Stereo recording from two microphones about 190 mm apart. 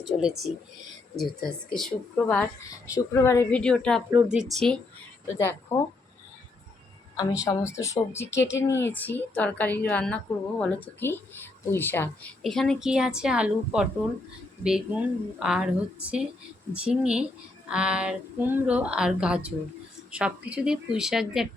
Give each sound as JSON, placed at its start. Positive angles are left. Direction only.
{"t": 0.0, "sound": "a woman's voice", "side_deg": 0}
{"t": 3.6, "sound": "a woman's voice", "side_deg": 5}
{"t": 5.4, "sound": "speech", "side_deg": 15}
{"t": 7.2, "sound": "a woman's voice", "side_deg": 20}